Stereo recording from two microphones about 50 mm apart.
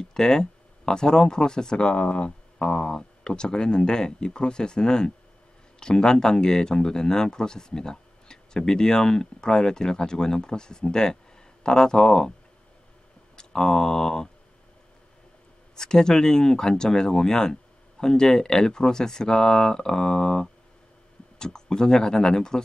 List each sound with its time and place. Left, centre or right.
0.0 s speech: centre
13.4 s speech: centre
15.7 s speech: centre